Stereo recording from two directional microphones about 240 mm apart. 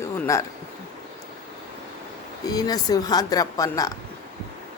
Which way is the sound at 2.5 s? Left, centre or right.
Centre.